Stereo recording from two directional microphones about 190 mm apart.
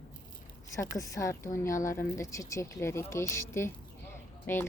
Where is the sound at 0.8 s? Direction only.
15° left (ahead or behind).